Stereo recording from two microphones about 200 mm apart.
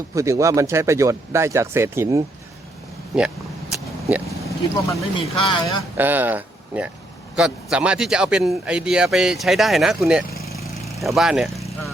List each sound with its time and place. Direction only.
0.1 s speech: 15° right (ahead or behind)
3.1 s speech: centre (ahead or behind)
4.4 s speech: 20° left (ahead or behind)
6.0 s speech: 10° right (ahead or behind)